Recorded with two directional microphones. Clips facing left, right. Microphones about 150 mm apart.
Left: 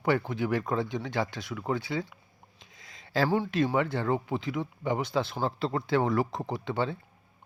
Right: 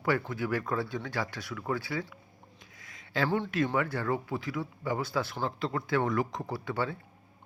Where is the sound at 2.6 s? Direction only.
25° left (ahead or behind).